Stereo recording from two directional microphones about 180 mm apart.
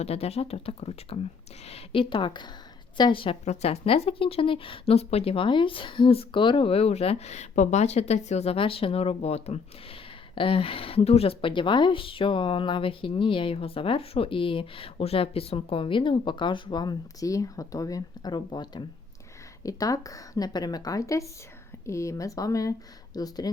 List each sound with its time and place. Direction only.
0.0 s a woman's voice: 35° left (ahead or behind)